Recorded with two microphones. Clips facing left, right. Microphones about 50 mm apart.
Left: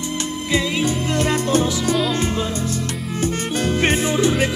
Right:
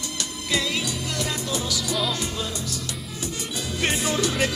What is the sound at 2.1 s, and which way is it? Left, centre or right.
Music, left.